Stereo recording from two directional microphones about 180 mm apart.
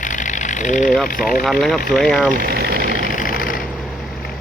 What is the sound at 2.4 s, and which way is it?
Speech, 60° right (ahead or behind).